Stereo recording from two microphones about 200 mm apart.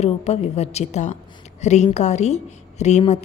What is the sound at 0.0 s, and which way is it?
A woman's voice, 35° left (ahead or behind).